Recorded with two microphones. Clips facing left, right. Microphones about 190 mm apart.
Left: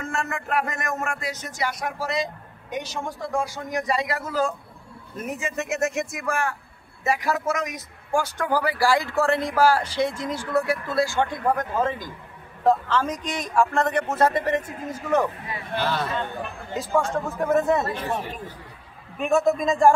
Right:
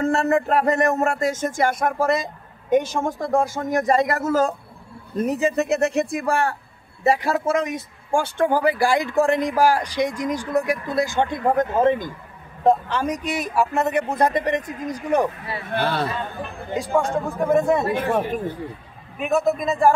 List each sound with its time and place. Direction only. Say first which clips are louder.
0.0 s a man's voice: right 11 dB; 35° right (ahead or behind); by 15.2 s 15° right (ahead or behind)
15.7 s a man's voice: right 3 dB; 55° right (ahead or behind)
17.6 s speech: right 2 dB; 10° right (ahead or behind)
17.9 s speech: right 7 dB; 55° right (ahead or behind)
19.1 s a man's voice: even; 5° right (ahead or behind)